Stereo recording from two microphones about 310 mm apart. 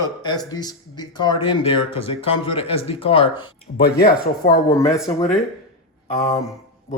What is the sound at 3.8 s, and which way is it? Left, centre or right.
Speech, left.